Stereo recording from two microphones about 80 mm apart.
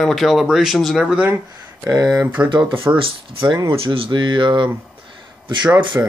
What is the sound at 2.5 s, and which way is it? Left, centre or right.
Speech, right.